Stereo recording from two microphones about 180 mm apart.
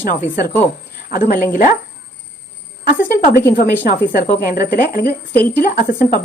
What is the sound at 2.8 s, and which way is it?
A woman's voice, 55° left (ahead or behind).